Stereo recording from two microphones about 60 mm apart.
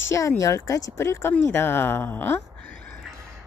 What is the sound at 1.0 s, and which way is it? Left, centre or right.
A woman's voice, left.